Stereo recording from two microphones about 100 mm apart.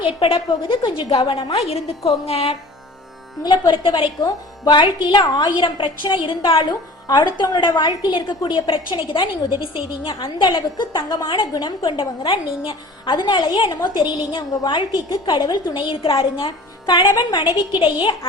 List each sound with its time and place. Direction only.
0.0 s a woman's voice: 65° left (ahead or behind)
1.5 s a woman's voice: 90° left
3.4 s a woman's voice: 45° left (ahead or behind)
4.2 s a woman's voice: 45° left (ahead or behind)